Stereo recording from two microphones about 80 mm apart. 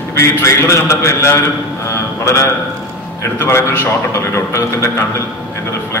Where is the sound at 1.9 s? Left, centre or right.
Left.